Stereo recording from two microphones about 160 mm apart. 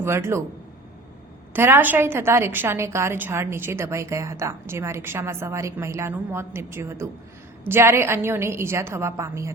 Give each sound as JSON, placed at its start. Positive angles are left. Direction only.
{"t": 0.0, "sound": "a woman's voice", "side_deg": -15}
{"t": 1.5, "sound": "a woman's voice", "side_deg": -15}